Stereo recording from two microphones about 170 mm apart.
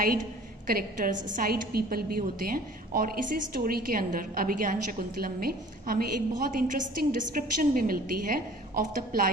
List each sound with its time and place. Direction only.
0.7 s a woman's voice: 55° right (ahead or behind)